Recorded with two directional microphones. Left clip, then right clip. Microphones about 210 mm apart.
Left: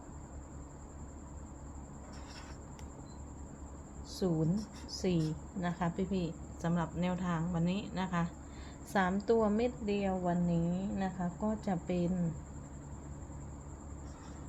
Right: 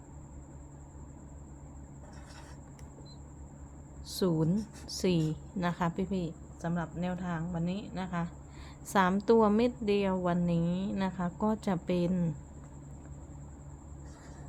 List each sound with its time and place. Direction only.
4.1 s a woman's voice: 35° right (ahead or behind); by 6.3 s 15° right (ahead or behind)
6.6 s a woman's voice: centre (ahead or behind)
8.9 s a woman's voice: 25° right (ahead or behind)